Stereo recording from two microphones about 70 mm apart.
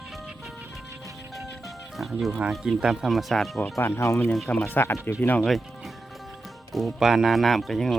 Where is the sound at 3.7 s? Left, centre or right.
Left.